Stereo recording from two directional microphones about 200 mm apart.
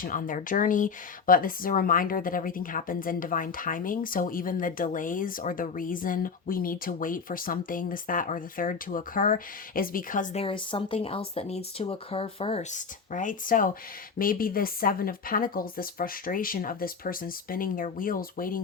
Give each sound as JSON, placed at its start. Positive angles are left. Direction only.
{"t": 0.0, "sound": "speech", "side_deg": 45}
{"t": 10.4, "sound": "speech", "side_deg": 25}